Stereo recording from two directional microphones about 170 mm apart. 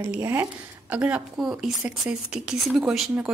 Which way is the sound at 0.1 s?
15° right (ahead or behind).